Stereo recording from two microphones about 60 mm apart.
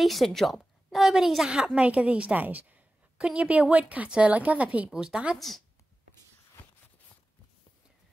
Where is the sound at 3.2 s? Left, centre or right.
Centre.